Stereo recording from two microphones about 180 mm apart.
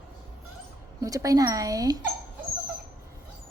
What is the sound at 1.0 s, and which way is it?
Speech, 20° right (ahead or behind).